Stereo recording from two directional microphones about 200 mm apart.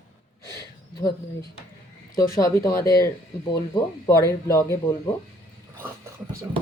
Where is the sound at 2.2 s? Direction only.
15° left (ahead or behind).